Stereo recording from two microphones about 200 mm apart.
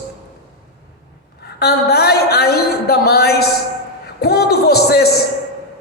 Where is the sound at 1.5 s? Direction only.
50° left (ahead or behind).